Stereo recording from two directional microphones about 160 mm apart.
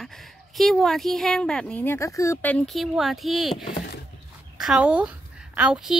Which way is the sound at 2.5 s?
Centre (ahead or behind).